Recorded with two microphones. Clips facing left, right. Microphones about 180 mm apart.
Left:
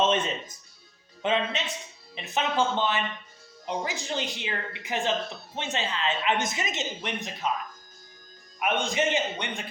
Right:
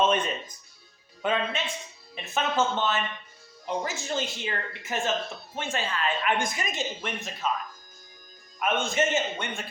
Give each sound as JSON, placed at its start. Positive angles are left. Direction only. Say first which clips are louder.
{"t": 0.0, "sound": "music", "louder": "even", "side_deg": 25}
{"t": 1.2, "sound": "a woman's voice", "louder": "left 1 dB", "side_deg": 20}
{"t": 8.5, "sound": "speech", "louder": "right 1 dB", "side_deg": 15}